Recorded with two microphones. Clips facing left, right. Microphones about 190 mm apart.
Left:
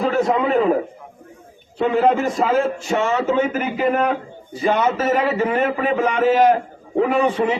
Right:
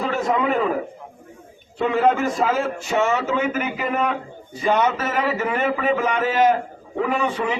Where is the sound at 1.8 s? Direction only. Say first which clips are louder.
Left 2 dB; centre (ahead or behind).